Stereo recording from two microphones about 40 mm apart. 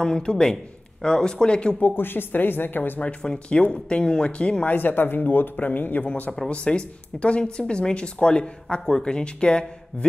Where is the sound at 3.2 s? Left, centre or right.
Left.